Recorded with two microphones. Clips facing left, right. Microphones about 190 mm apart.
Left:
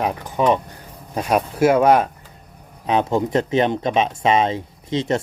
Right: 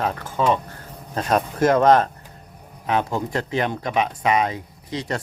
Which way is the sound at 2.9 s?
20° left (ahead or behind).